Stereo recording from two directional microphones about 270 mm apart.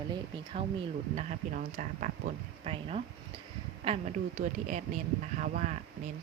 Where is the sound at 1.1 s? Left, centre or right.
Right.